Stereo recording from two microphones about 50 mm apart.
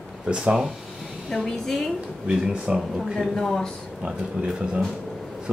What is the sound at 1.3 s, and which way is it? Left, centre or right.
Speech, centre.